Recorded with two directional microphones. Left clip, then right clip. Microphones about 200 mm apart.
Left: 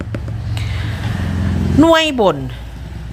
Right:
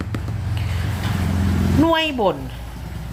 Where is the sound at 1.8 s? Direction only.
40° left (ahead or behind).